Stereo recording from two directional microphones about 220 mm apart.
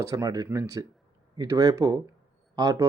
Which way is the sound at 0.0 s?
15° right (ahead or behind).